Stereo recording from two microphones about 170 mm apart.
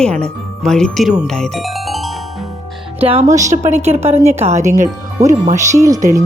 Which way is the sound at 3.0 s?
35° right (ahead or behind).